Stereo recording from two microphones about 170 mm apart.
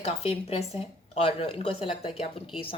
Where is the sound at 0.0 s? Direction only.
35° left (ahead or behind).